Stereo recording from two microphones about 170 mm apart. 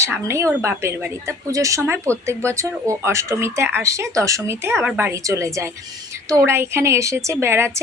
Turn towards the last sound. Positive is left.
turn(degrees=-15)  # may be behind; listen again after turning